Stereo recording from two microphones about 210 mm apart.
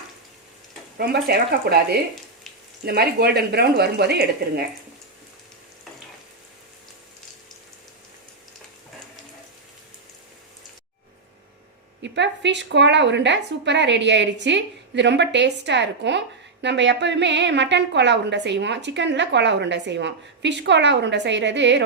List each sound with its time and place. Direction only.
0.9 s speech: 45° right (ahead or behind)
2.8 s speech: 50° right (ahead or behind)
12.0 s a woman's voice: 55° right (ahead or behind)